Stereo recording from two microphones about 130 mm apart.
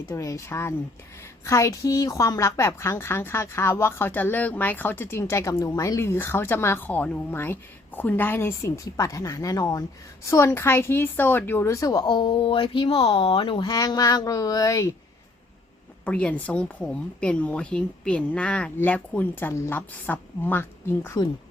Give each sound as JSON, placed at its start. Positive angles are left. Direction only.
{"t": 0.1, "sound": "a woman's voice", "side_deg": 25}
{"t": 16.0, "sound": "a woman's voice", "side_deg": 10}